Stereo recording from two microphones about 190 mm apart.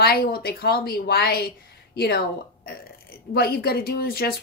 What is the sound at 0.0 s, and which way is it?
A woman's voice, 55° left (ahead or behind).